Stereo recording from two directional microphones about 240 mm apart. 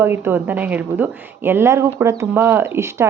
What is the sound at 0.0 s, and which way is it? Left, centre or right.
Speech, centre.